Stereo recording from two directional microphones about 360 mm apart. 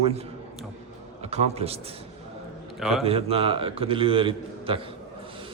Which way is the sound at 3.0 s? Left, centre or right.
Centre.